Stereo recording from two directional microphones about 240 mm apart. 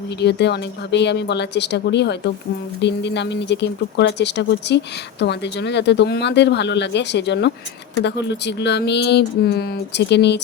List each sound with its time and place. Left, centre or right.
0.2 s speech: left